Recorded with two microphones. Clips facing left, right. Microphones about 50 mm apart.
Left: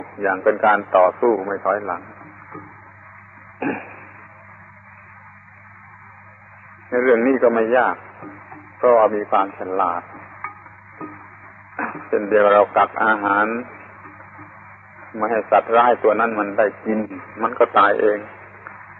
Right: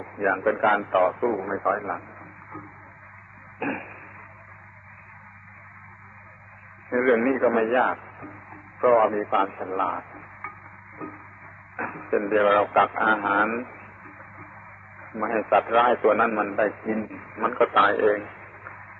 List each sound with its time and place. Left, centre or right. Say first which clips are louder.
0.4 s a man's voice: left 8 dB; centre
1.4 s a man's voice: left 4 dB; centre
3.5 s a sound: left 5 dB; centre
6.9 s a man's voice: left 5 dB; centre
8.2 s music: left 4 dB; centre
9.4 s a man's voice: left 5 dB; centre
12.1 s a man's voice: left 6 dB; centre
15.1 s a man's voice: left 5 dB; centre